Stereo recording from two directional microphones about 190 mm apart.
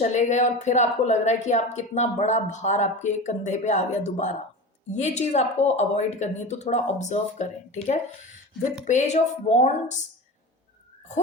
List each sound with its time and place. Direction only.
0.0 s a woman's voice: 40° left (ahead or behind)